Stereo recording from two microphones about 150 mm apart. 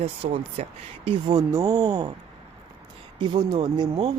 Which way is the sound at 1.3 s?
20° right (ahead or behind).